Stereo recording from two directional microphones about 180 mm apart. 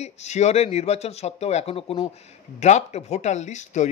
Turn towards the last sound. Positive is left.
turn(degrees=40)  # may be behind; listen again after turning